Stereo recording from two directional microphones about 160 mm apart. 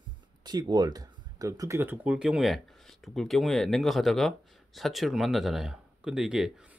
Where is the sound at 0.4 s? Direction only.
25° right (ahead or behind).